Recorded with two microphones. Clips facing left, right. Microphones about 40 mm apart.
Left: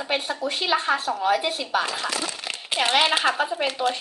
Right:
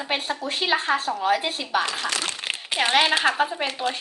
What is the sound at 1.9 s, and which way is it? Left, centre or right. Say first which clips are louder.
Speech: even; right.